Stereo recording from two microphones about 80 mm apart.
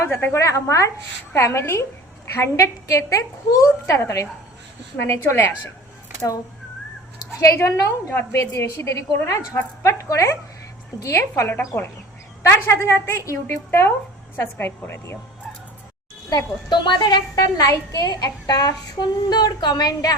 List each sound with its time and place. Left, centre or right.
0.0 s a woman's voice: left
2.3 s a woman's voice: left
7.3 s a woman's voice: left
12.4 s a woman's voice: left
16.6 s a woman's voice: left